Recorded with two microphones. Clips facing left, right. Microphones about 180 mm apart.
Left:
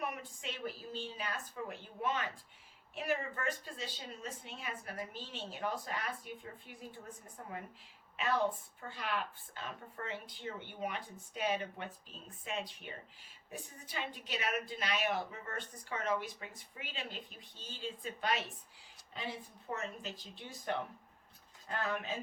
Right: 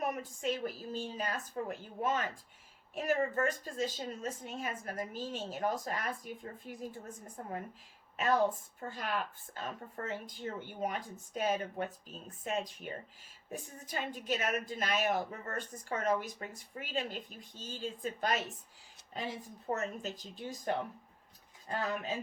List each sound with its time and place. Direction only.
0.0 s a woman's voice: 45° right (ahead or behind)